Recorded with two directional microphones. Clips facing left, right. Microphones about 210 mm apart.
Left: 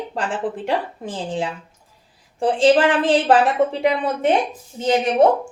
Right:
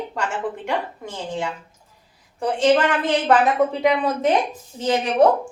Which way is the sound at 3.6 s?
20° left (ahead or behind).